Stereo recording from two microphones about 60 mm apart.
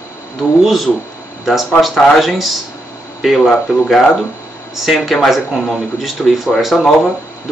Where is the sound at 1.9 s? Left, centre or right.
Centre.